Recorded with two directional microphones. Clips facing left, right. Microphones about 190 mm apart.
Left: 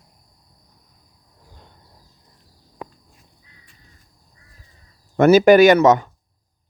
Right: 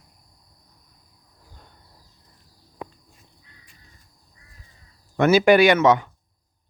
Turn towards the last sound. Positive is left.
turn(degrees=45)  # may be behind; listen again after turning